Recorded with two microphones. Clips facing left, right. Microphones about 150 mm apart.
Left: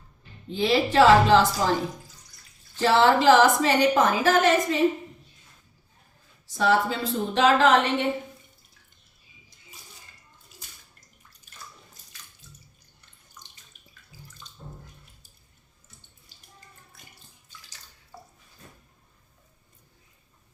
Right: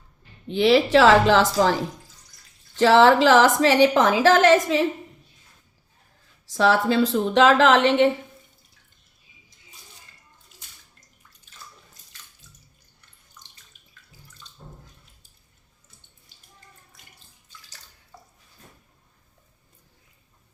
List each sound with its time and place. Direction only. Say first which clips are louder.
0.4 s a woman's voice: right 5 dB; 80° right
2.7 s a woman's voice: right 5 dB; 90° right
6.5 s a woman's voice: right 3 dB; 90° right